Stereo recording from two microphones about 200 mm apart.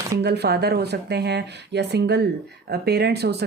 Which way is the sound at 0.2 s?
55° right (ahead or behind).